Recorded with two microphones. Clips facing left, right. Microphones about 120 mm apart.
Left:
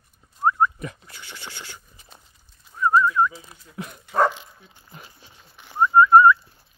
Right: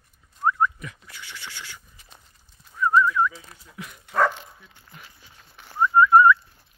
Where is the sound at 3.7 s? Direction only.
35° left (ahead or behind).